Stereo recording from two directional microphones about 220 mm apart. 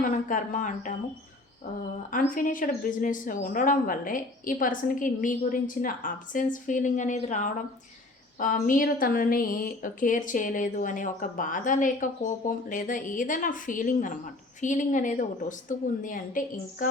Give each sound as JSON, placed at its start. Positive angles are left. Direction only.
{"t": 0.0, "sound": "speech", "side_deg": 35}
{"t": 2.3, "sound": "speech", "side_deg": 35}